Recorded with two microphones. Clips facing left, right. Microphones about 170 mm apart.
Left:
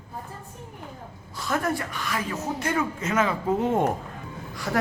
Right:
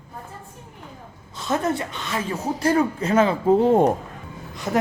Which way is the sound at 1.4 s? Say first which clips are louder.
Right 3 dB; 20° right (ahead or behind).